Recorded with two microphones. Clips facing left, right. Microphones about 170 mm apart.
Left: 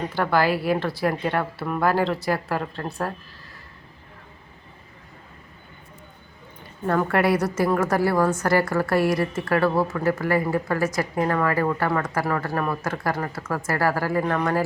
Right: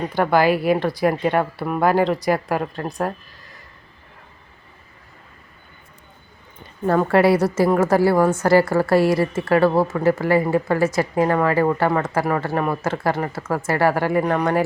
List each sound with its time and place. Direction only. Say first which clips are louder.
0.1 s speech: right 5 dB; 15° right (ahead or behind)
6.8 s a woman's voice: right 5 dB; 30° right (ahead or behind)